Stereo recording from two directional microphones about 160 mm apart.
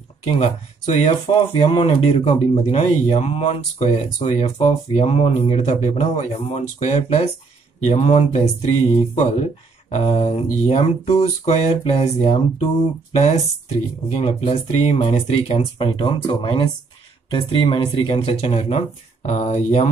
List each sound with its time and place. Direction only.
0.3 s speech: 40° left (ahead or behind)